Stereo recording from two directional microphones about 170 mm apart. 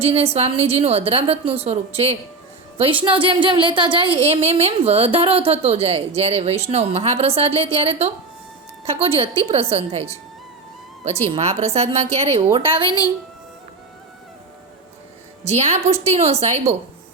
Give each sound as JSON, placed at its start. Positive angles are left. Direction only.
{"t": 0.0, "sound": "speech", "side_deg": -35}
{"t": 2.7, "sound": "speech", "side_deg": -30}
{"t": 11.0, "sound": "speech", "side_deg": -40}
{"t": 15.4, "sound": "speech", "side_deg": -40}